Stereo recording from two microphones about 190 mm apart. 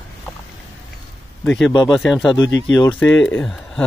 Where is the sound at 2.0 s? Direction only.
Centre (ahead or behind).